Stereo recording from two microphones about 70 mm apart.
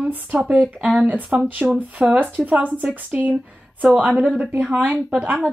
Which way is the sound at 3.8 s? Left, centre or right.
Centre.